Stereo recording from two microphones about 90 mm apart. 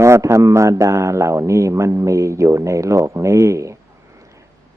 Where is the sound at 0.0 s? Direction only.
35° right (ahead or behind).